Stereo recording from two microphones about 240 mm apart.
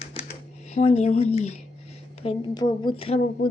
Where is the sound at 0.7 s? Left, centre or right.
Left.